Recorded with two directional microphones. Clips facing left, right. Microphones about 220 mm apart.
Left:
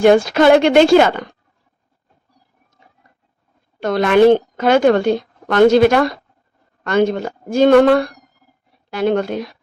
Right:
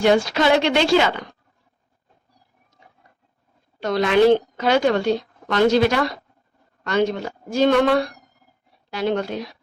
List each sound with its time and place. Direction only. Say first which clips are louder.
0.0 s a woman's voice: left 6 dB; 50° left (ahead or behind)
3.8 s a woman's voice: left 4 dB; 55° left (ahead or behind)